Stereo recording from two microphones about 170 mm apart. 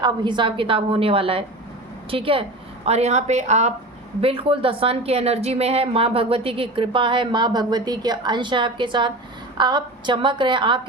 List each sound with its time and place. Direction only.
0.0 s a woman's voice: 25° right (ahead or behind)